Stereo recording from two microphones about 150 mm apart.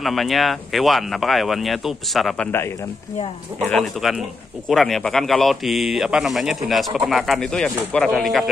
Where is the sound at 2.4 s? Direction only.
15° left (ahead or behind).